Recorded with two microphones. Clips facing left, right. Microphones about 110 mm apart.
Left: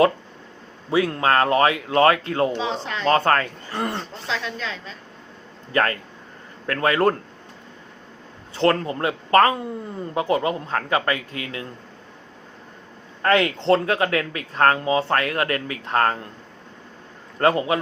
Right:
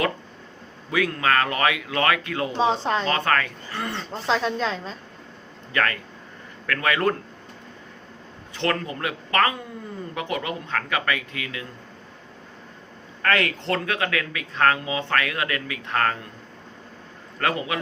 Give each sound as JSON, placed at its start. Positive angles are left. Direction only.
{"t": 0.9, "sound": "speech", "side_deg": 30}
{"t": 2.6, "sound": "speech", "side_deg": -40}
{"t": 3.1, "sound": "speech", "side_deg": 35}
{"t": 4.1, "sound": "speech", "side_deg": -40}
{"t": 5.7, "sound": "speech", "side_deg": 30}
{"t": 8.5, "sound": "speech", "side_deg": 30}
{"t": 13.2, "sound": "speech", "side_deg": 25}
{"t": 17.4, "sound": "speech", "side_deg": 35}